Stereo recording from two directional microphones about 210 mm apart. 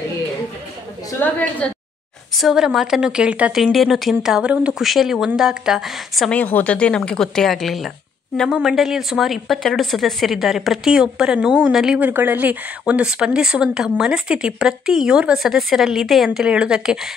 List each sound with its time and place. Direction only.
1.2 s a woman's voice: 5° left (ahead or behind)